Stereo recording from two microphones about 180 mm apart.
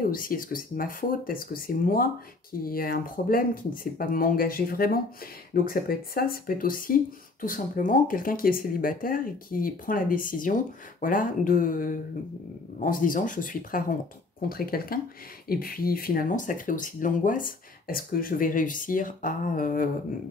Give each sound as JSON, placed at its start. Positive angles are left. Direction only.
{"t": 0.1, "sound": "speech", "side_deg": 50}